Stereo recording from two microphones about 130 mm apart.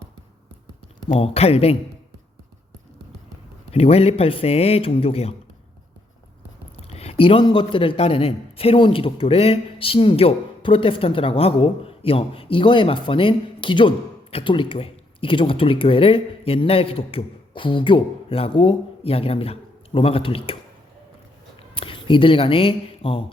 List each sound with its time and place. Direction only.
1.1 s a man's voice: 50° left (ahead or behind)
3.7 s a man's voice: 50° left (ahead or behind)
6.7 s a man's voice: 55° left (ahead or behind)
21.8 s speech: 40° left (ahead or behind)